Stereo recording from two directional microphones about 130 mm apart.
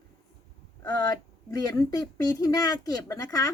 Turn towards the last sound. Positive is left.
turn(degrees=30)  # may be behind; listen again after turning